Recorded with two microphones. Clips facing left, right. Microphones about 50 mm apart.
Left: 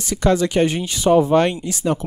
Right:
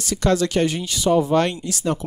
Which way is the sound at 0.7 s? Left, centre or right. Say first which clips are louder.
Left 3 dB; left.